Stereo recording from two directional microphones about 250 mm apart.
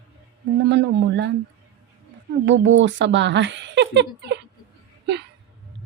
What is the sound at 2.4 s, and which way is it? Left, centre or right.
Speech, right.